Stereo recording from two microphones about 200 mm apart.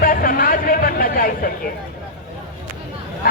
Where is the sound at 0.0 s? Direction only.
45° left (ahead or behind).